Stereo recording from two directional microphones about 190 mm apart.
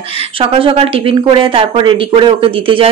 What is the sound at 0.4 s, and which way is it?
Speech, 30° right (ahead or behind).